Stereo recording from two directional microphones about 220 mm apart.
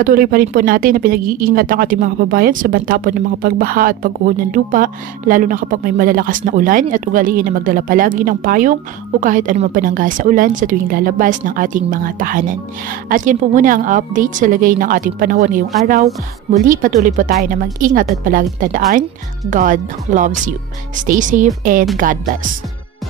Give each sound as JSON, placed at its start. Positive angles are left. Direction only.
{"t": 0.0, "sound": "speech", "side_deg": -40}
{"t": 16.6, "sound": "speech", "side_deg": -35}